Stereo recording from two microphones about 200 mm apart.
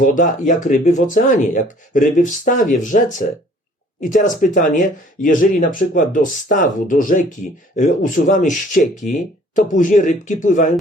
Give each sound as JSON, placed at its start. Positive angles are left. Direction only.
{"t": 0.0, "sound": "speech", "side_deg": 40}